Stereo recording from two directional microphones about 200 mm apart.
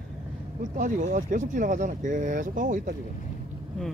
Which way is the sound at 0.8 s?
40° right (ahead or behind).